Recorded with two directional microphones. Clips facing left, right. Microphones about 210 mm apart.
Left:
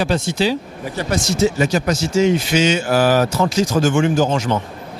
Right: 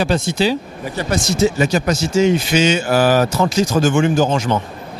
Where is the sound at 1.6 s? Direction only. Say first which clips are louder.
Right 1 dB; 15° right (ahead or behind).